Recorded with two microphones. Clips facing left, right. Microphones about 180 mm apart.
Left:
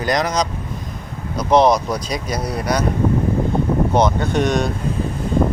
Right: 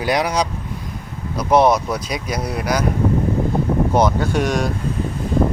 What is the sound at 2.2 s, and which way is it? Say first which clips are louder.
Speech: even; 30° left (ahead or behind).